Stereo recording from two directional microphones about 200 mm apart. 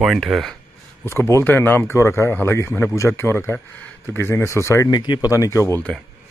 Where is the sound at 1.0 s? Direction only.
15° left (ahead or behind).